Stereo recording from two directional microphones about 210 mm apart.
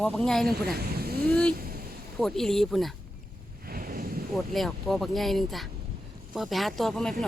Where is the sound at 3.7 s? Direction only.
45° right (ahead or behind).